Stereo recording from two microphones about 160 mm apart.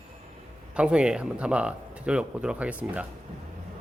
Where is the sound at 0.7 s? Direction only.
5° right (ahead or behind).